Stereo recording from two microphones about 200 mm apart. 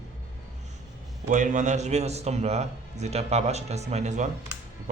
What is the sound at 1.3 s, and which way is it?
A man's voice, 40° right (ahead or behind).